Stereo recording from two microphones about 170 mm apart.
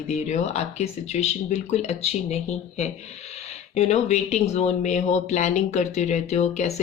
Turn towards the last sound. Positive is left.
turn(degrees=40)  # may be behind; listen again after turning